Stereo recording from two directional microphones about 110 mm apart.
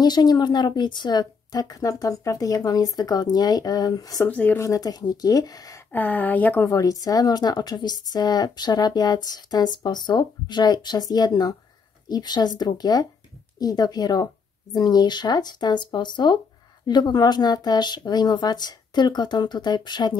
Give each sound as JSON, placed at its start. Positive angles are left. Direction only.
{"t": 0.0, "sound": "a woman's voice", "side_deg": 40}
{"t": 4.3, "sound": "speech", "side_deg": 15}
{"t": 4.6, "sound": "a woman's voice", "side_deg": 30}
{"t": 5.9, "sound": "speech", "side_deg": 15}
{"t": 6.7, "sound": "a woman's voice", "side_deg": 30}